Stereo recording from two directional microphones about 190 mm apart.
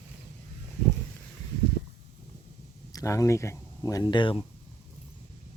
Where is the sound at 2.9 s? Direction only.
15° left (ahead or behind).